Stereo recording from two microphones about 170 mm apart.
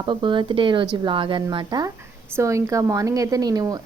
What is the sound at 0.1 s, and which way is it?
A woman's voice, 30° right (ahead or behind).